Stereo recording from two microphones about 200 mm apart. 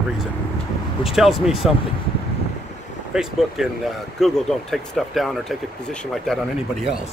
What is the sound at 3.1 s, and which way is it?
Speech, centre (ahead or behind).